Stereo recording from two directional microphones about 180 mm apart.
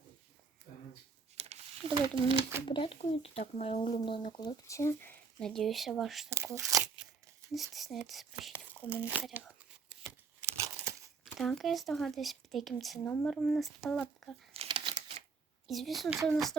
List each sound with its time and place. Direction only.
1.4 s a sound: 35° right (ahead or behind)
2.6 s speech: 25° left (ahead or behind)
5.4 s speech: centre (ahead or behind)
6.3 s speech: 15° right (ahead or behind)
7.5 s speech: centre (ahead or behind)
8.5 s crumpling: 10° left (ahead or behind)
9.0 s crumpling: 5° right (ahead or behind)
11.3 s speech: centre (ahead or behind)
14.5 s crumpling: 30° right (ahead or behind)
15.6 s speech: centre (ahead or behind)